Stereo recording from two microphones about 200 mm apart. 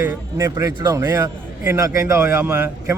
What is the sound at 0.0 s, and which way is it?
A man's voice, 15° right (ahead or behind).